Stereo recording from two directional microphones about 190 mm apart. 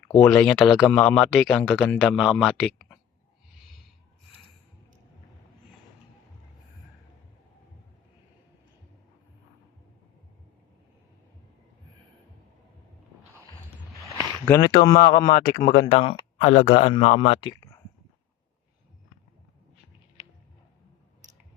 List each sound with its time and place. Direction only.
0.2 s speech: centre (ahead or behind)
14.6 s speech: 25° left (ahead or behind)
15.3 s speech: 50° left (ahead or behind)
15.6 s speech: 35° left (ahead or behind)
16.4 s speech: 40° left (ahead or behind); by 17.7 s 20° left (ahead or behind)